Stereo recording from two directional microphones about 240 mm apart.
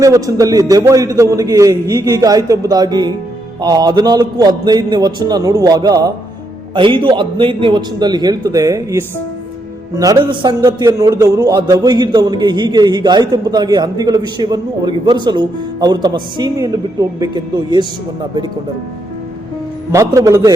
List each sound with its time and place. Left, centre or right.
0.0 s a man's voice: centre
19.9 s a man's voice: centre